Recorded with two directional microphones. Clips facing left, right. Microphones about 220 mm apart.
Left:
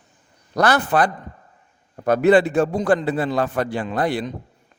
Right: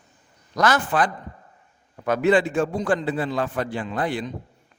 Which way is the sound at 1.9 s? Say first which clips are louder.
Left 4 dB; 40° left (ahead or behind).